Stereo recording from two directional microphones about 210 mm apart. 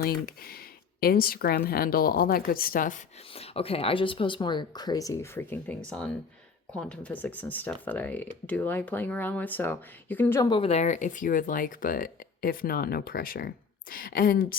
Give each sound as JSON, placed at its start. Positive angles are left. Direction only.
{"t": 0.0, "sound": "speech", "side_deg": 45}
{"t": 3.3, "sound": "speech", "side_deg": 30}
{"t": 6.7, "sound": "speech", "side_deg": 5}
{"t": 10.5, "sound": "speech", "side_deg": 30}